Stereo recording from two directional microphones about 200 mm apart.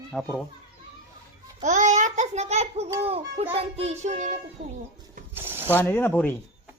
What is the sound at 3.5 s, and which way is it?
Child singing, 30° right (ahead or behind).